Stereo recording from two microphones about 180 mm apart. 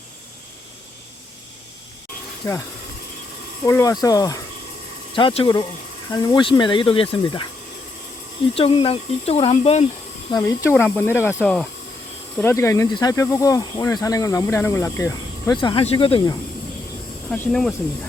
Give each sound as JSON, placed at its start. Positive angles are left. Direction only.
{"t": 2.4, "sound": "speech", "side_deg": 15}
{"t": 3.7, "sound": "speech", "side_deg": 15}
{"t": 5.1, "sound": "speech", "side_deg": 30}
{"t": 8.5, "sound": "speech", "side_deg": 30}
{"t": 10.3, "sound": "speech", "side_deg": 10}
{"t": 12.4, "sound": "speech", "side_deg": 15}
{"t": 17.2, "sound": "speech", "side_deg": 10}